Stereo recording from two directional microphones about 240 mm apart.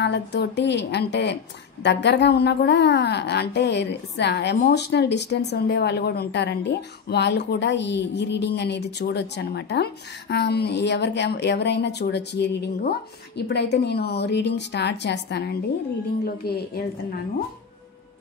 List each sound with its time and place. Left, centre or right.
0.0 s a woman's voice: left